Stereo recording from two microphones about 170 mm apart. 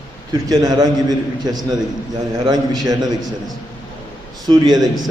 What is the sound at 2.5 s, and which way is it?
Speech, 25° right (ahead or behind).